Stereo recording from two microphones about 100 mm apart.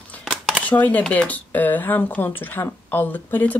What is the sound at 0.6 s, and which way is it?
Speech, 15° left (ahead or behind).